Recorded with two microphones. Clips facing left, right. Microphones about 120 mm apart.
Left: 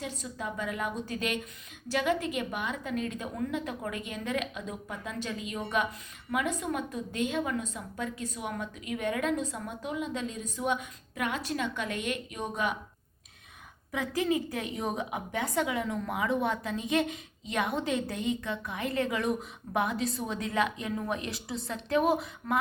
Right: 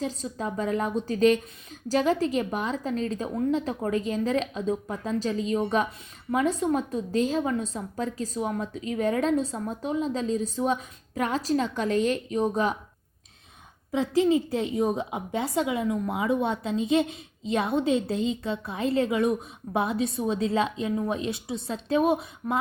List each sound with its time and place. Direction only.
0.3 s a woman's voice: 35° right (ahead or behind)
13.9 s a woman's voice: 25° right (ahead or behind)